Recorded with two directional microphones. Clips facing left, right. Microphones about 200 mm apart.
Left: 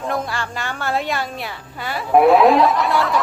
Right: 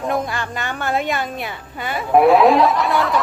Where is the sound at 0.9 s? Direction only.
Centre (ahead or behind).